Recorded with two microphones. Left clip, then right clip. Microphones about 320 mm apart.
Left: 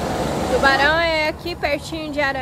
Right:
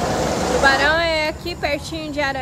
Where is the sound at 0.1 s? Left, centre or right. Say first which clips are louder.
Right 2 dB; right.